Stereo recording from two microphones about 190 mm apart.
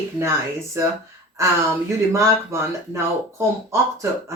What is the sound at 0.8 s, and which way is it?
Speech, 15° right (ahead or behind).